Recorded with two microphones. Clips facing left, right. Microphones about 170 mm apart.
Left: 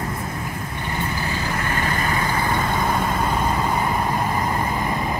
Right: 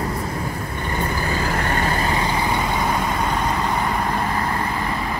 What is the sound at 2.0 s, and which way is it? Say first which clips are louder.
Vehicle: right 1 dB; 20° right (ahead or behind).